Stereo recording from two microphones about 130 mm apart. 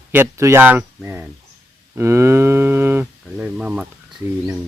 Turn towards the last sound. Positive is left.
turn(degrees=-5)  # may be behind; listen again after turning